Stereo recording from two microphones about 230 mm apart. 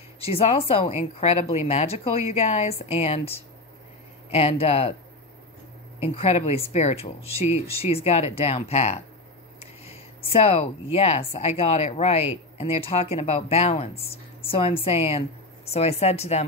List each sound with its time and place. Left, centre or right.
0.2 s a woman's voice: left
5.9 s a woman's voice: left